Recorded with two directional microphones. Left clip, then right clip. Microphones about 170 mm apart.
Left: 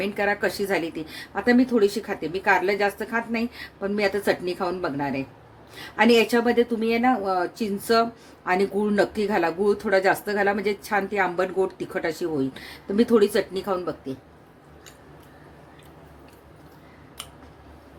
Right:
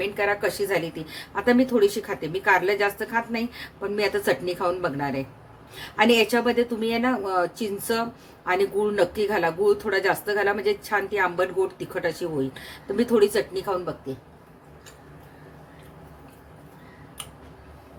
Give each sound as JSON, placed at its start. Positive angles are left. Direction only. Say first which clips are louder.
{"t": 0.0, "sound": "a woman's voice", "louder": "even", "side_deg": 35}